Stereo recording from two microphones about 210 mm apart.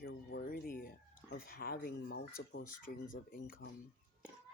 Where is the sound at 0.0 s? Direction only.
50° left (ahead or behind).